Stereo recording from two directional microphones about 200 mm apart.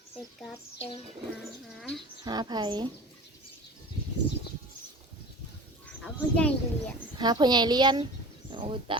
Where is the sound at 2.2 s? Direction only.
20° right (ahead or behind).